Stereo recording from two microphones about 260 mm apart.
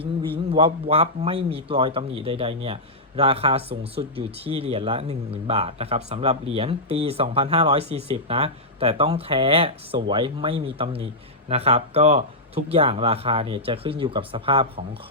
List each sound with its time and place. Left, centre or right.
0.5 s speech: right